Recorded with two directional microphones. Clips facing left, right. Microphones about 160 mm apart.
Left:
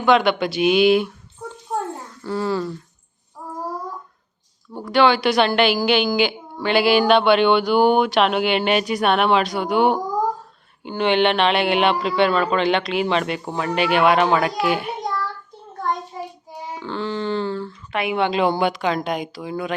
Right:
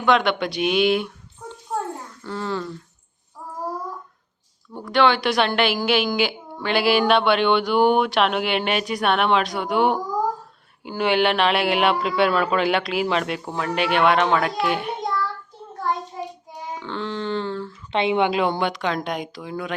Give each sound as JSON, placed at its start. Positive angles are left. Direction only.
{"t": 0.0, "sound": "a woman's voice", "side_deg": 0}
{"t": 1.7, "sound": "babbling", "side_deg": 5}
{"t": 2.2, "sound": "speech", "side_deg": 10}
{"t": 4.7, "sound": "a woman's voice", "side_deg": 5}
{"t": 16.5, "sound": "a child's voice", "side_deg": 5}
{"t": 17.9, "sound": "a woman's voice", "side_deg": -25}
{"t": 18.3, "sound": "a woman's voice", "side_deg": 0}